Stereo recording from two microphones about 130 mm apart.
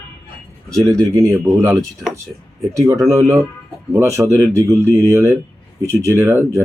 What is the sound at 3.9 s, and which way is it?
Speech, 25° right (ahead or behind).